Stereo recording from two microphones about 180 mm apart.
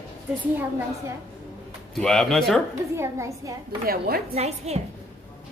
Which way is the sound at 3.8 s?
55° right (ahead or behind).